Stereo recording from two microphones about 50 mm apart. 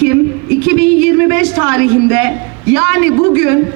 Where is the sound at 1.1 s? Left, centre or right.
Right.